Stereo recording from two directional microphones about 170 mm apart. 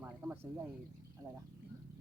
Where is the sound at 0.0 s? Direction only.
10° right (ahead or behind).